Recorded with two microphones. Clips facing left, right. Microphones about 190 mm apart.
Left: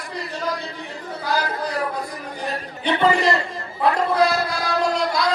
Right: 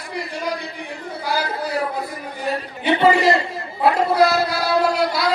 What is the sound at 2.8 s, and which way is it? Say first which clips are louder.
Speech: right 3 dB; 5° right (ahead or behind).